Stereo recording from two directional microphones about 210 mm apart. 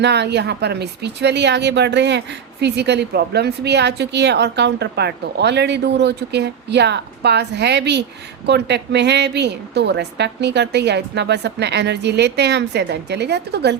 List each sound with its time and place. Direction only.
0.0 s speech: 55° right (ahead or behind)